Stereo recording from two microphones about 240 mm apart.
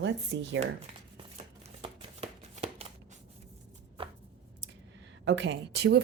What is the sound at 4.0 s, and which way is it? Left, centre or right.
Chopping, right.